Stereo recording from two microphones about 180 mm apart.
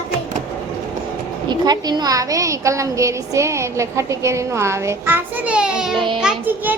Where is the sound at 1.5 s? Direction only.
25° right (ahead or behind).